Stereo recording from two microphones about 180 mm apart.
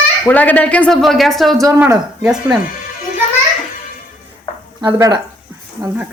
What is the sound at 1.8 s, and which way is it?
Speech, 15° right (ahead or behind).